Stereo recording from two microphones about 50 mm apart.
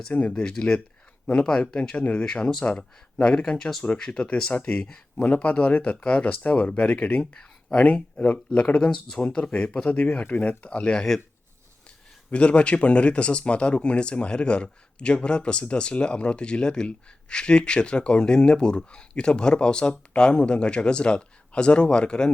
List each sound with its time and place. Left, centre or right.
0.1 s speech: left
2.2 s speech: centre
5.2 s speech: left
7.2 s speech: centre
8.2 s speech: left
12.3 s speech: left